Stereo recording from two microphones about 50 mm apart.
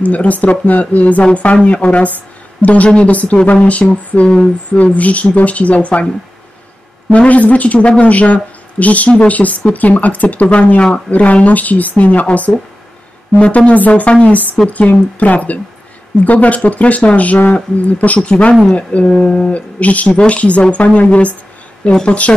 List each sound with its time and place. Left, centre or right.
0.0 s a woman's voice: left
7.1 s a woman's voice: left